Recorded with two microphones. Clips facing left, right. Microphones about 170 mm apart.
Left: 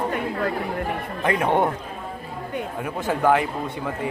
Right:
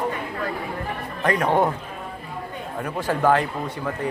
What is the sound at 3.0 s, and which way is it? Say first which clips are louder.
Speech: even; 15° left (ahead or behind).